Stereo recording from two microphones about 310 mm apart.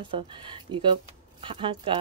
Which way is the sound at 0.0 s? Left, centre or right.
Centre.